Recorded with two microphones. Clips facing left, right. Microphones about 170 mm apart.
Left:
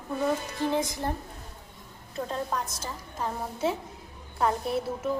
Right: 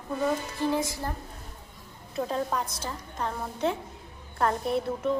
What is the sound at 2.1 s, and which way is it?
A woman's voice, 5° right (ahead or behind).